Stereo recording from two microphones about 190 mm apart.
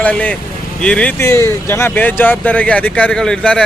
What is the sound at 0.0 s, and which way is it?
Speech, 5° left (ahead or behind).